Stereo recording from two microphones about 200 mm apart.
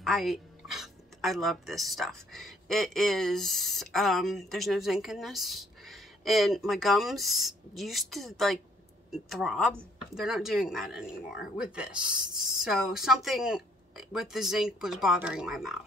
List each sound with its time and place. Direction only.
0.0 s speech: centre (ahead or behind)